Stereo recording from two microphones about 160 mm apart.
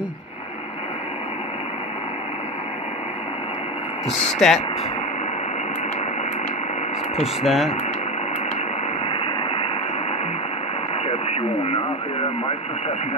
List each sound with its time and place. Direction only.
4.4 s speech: centre (ahead or behind)
7.4 s speech: centre (ahead or behind)
9.1 s vehicle: 35° left (ahead or behind)